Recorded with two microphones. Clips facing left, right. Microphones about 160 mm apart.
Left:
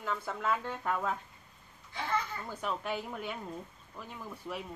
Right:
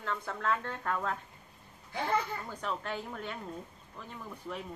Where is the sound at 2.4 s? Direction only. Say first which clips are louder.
Left 1 dB; 5° left (ahead or behind).